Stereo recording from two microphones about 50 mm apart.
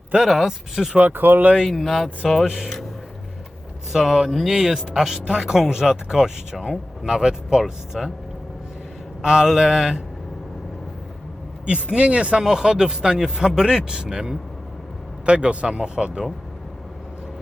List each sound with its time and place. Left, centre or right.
0.2 s speech: centre
0.9 s speech: right
1.6 s speech: centre
3.9 s speech: centre
9.2 s speech: centre
11.6 s speech: right
12.4 s speech: centre